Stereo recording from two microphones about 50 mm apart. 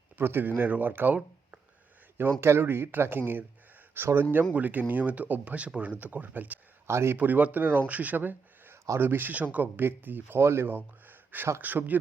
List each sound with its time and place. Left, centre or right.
0.2 s speech: right
2.4 s speech: right
6.8 s speech: right
7.2 s speech: right
7.9 s speech: right
9.3 s speech: right
10.4 s speech: right